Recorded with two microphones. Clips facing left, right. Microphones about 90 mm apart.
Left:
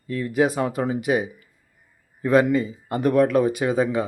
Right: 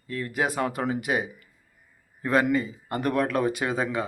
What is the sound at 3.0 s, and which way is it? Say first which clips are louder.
Speech: left 7 dB; 45° right (ahead or behind).